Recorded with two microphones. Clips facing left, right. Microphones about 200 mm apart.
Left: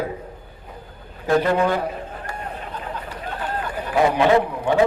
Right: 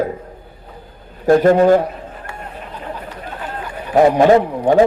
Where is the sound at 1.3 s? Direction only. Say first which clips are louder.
Right 8 dB; 45° right (ahead or behind).